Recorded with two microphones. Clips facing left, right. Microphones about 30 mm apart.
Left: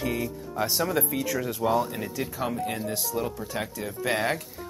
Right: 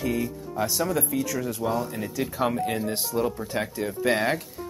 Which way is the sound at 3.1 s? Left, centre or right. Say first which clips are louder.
Right 5 dB; centre.